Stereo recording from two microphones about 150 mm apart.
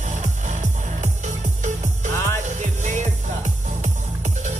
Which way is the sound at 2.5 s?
55° right (ahead or behind).